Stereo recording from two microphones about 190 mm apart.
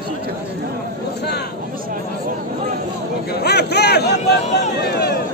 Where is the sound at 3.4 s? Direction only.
60° left (ahead or behind).